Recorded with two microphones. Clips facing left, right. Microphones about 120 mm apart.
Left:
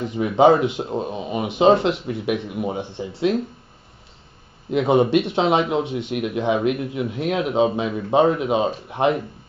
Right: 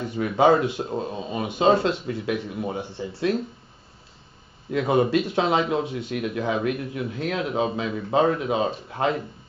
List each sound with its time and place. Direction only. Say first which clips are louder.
0.0 s speech: left 4 dB; 20° left (ahead or behind)
4.6 s speech: left 4 dB; 20° left (ahead or behind)